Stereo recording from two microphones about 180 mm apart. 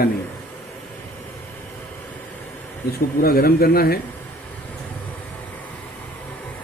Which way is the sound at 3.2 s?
55° left (ahead or behind).